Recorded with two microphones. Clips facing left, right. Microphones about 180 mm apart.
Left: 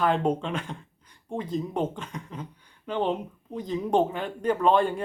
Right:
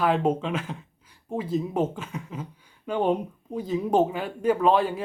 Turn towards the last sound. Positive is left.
turn(degrees=-5)  # may be behind; listen again after turning